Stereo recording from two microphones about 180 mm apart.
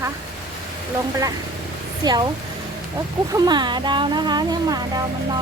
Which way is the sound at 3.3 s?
25° right (ahead or behind).